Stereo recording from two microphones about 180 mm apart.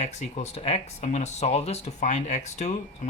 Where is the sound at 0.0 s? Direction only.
40° left (ahead or behind).